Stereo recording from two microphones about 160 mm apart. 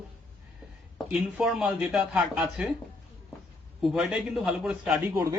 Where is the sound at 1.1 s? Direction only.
5° right (ahead or behind).